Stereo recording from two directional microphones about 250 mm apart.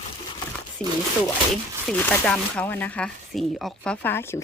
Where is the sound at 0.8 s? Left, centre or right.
Centre.